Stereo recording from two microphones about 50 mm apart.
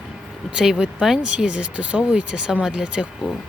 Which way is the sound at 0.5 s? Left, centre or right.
Centre.